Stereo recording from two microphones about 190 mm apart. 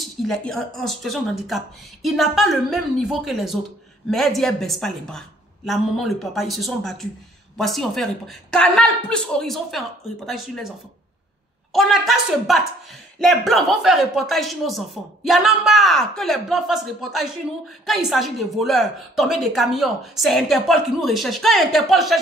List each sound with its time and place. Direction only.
0.3 s a woman's voice: 5° left (ahead or behind)
11.7 s a woman's voice: centre (ahead or behind)